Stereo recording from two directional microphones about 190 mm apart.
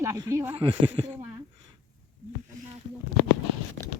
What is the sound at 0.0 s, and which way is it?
Speech, 15° right (ahead or behind).